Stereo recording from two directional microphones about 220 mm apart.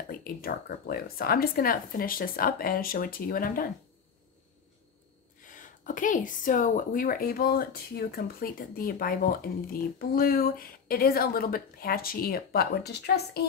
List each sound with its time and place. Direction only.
0.2 s a woman's voice: 40° left (ahead or behind)
5.4 s a woman's voice: 35° left (ahead or behind)